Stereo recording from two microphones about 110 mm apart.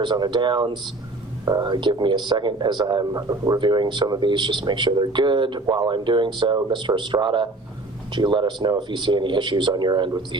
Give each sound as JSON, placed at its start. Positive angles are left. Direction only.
{"t": 0.0, "sound": "speech", "side_deg": -45}
{"t": 3.6, "sound": "speech", "side_deg": -45}